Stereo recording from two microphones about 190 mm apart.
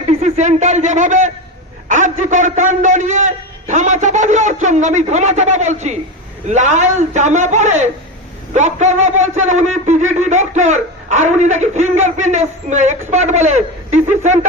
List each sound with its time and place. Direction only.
0.1 s a man's voice: 35° right (ahead or behind)